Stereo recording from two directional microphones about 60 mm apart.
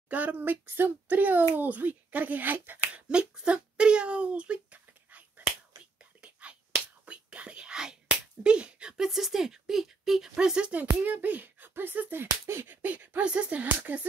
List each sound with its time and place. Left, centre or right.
0.1 s a child's voice: right
2.9 s speech: centre
6.4 s whispering: centre
8.1 s speech: centre
10.7 s speech: right
12.4 s a sound: right
12.8 s a child's voice: right